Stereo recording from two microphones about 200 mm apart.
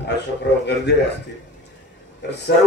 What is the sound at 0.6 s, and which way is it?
Speech, 60° left (ahead or behind).